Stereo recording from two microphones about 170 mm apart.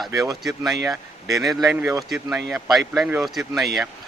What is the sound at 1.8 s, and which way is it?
Speech, 15° right (ahead or behind).